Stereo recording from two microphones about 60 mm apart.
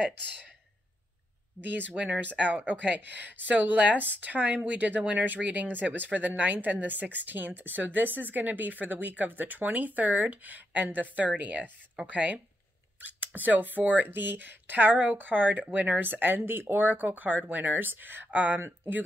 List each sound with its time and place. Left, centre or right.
1.6 s speech: right